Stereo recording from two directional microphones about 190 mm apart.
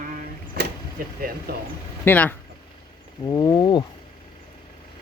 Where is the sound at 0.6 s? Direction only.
55° right (ahead or behind).